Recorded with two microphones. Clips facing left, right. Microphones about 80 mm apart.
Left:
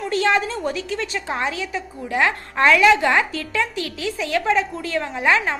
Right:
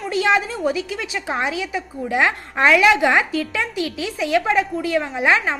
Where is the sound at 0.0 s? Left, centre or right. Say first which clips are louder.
Right 1 dB; centre.